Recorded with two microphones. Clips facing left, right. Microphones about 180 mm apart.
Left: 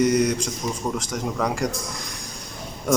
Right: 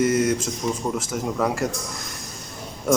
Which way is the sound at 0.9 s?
5° right (ahead or behind).